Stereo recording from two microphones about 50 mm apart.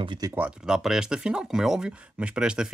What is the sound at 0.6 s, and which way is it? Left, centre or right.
Speech, centre.